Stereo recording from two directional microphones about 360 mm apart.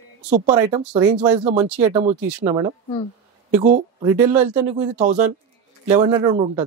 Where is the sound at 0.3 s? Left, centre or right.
Centre.